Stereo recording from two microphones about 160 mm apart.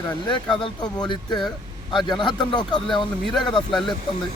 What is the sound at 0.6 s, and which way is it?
Speech, 25° left (ahead or behind).